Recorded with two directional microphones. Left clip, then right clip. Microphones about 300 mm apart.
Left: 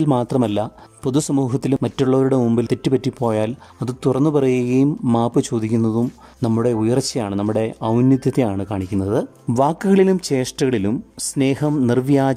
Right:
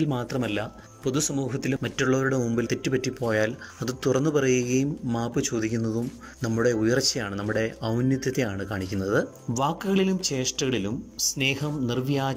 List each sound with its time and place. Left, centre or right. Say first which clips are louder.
0.0 s speech: left 10 dB; centre
9.6 s speech: left 9 dB; centre